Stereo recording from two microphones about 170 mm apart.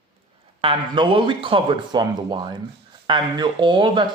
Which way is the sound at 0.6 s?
30° right (ahead or behind).